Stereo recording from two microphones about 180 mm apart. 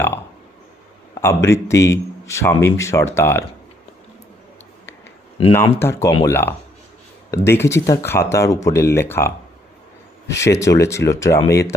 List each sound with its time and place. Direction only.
1.1 s a man's voice: 15° left (ahead or behind)
5.7 s a man's voice: 15° left (ahead or behind)